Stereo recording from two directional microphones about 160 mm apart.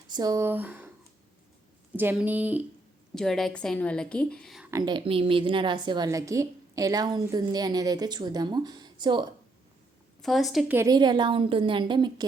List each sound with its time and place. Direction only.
0.1 s speech: 25° right (ahead or behind)
2.0 s speech: 10° right (ahead or behind)
3.2 s a woman's voice: centre (ahead or behind)
4.7 s a woman's voice: 25° right (ahead or behind)
10.2 s a woman's voice: centre (ahead or behind)
10.8 s a woman's voice: 25° right (ahead or behind)